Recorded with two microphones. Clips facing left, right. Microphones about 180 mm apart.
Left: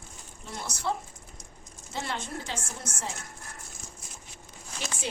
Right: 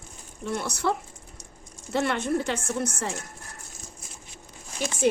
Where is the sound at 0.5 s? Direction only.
65° right (ahead or behind).